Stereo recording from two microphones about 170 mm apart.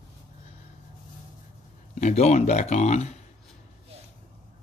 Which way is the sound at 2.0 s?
40° left (ahead or behind).